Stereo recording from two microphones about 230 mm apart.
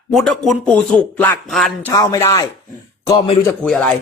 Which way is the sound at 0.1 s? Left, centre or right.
Centre.